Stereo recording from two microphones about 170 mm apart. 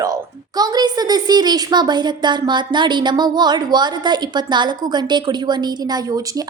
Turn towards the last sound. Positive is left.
turn(degrees=-20)  # may be behind; listen again after turning